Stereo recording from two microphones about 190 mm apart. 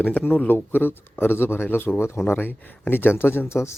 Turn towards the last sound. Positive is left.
turn(degrees=15)  # may be behind; listen again after turning